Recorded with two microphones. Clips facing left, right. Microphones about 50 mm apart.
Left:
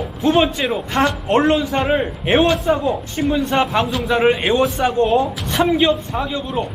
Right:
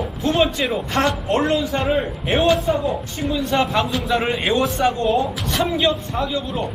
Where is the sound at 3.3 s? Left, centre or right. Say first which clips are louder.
Left 1 dB; left.